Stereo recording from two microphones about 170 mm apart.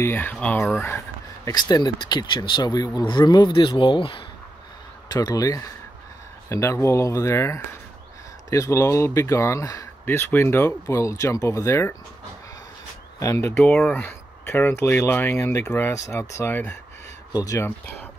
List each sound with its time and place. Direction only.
0.0 s speech: 10° left (ahead or behind)
13.2 s speech: 15° left (ahead or behind)